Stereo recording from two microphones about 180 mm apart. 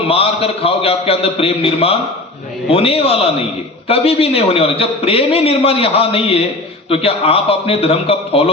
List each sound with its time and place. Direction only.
0.1 s a man's voice: 35° left (ahead or behind)